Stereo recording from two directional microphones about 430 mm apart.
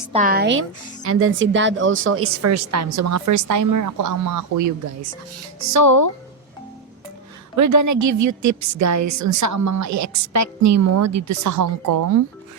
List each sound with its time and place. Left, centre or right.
0.1 s a woman's voice: centre; by 6.1 s right
7.5 s a woman's voice: right